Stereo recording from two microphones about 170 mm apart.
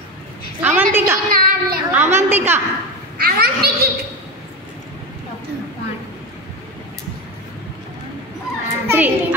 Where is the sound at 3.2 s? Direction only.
65° right (ahead or behind).